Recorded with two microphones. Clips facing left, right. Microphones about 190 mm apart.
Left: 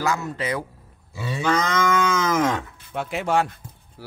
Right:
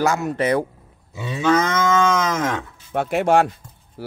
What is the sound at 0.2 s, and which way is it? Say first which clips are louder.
Speech: right 7 dB; 60° right (ahead or behind).